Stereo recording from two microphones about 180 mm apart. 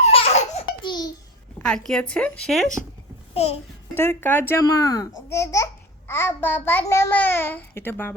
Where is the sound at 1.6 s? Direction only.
5° left (ahead or behind).